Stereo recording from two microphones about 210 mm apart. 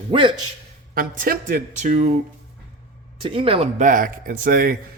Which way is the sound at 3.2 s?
25° right (ahead or behind).